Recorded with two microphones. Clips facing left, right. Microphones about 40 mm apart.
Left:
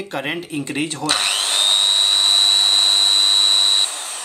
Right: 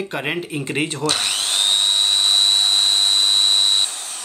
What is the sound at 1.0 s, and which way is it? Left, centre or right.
Tools, left.